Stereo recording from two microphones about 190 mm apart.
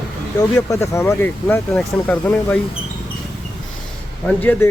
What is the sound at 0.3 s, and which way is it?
Speech, 15° left (ahead or behind).